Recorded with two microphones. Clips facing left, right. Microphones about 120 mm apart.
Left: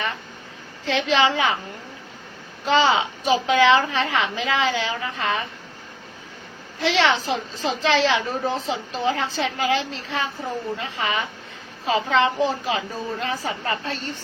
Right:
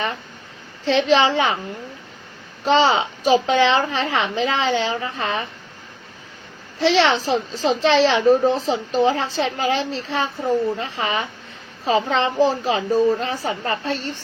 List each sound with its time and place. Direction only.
0.9 s speech: 30° right (ahead or behind)
2.6 s speech: 30° right (ahead or behind)
6.8 s a woman's voice: 30° right (ahead or behind)